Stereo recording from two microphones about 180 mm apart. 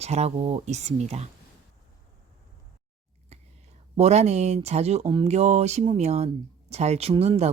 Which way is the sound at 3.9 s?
35° right (ahead or behind).